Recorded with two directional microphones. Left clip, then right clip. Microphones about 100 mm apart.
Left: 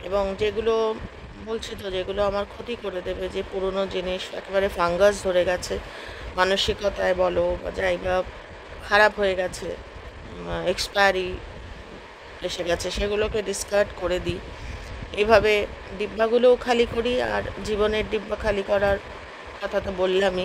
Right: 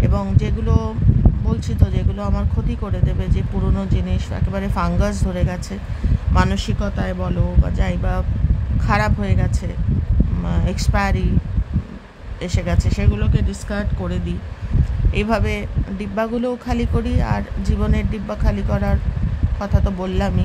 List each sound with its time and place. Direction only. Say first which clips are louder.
0.1 s speech: left 3 dB; 20° left (ahead or behind); by 9.5 s 35° left (ahead or behind)
10.5 s speech: left 2 dB; 35° left (ahead or behind)
12.4 s speech: left 1 dB; 40° left (ahead or behind); by 14.3 s 60° left (ahead or behind)
15.1 s speech: left 4 dB; 35° left (ahead or behind)